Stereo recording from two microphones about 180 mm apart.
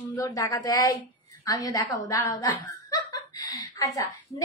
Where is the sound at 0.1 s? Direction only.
20° left (ahead or behind).